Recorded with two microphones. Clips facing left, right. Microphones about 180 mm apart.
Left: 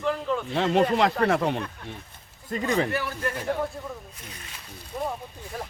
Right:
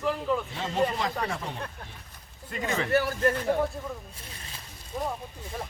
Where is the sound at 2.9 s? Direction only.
40° right (ahead or behind).